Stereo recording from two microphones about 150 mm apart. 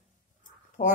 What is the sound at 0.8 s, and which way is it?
Speech, 70° left (ahead or behind).